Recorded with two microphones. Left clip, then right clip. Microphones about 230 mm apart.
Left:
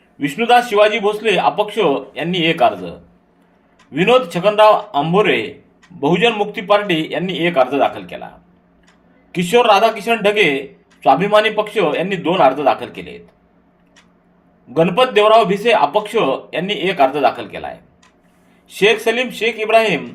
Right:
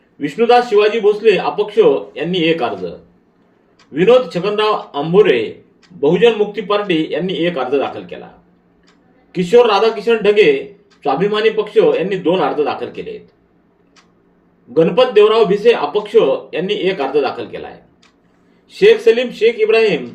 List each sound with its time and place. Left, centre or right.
0.3 s a man's voice: left
3.9 s a man's voice: left
9.3 s a man's voice: left
14.9 s a man's voice: left
18.8 s a man's voice: left